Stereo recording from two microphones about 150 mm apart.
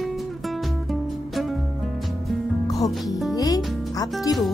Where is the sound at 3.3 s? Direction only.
25° left (ahead or behind).